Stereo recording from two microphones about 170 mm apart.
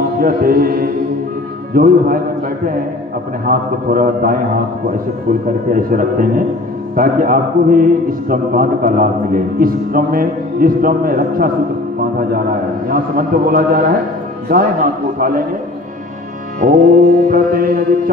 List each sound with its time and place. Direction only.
0.2 s a man's voice: 60° right (ahead or behind)
5.7 s a man's voice: 55° right (ahead or behind)
16.5 s music: 55° right (ahead or behind)
17.3 s a man's voice: 60° right (ahead or behind)